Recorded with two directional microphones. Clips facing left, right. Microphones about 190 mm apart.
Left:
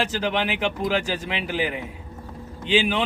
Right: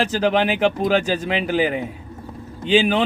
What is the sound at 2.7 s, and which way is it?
Speech, 45° right (ahead or behind).